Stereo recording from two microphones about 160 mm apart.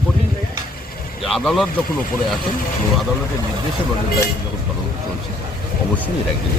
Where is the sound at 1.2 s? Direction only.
Centre (ahead or behind).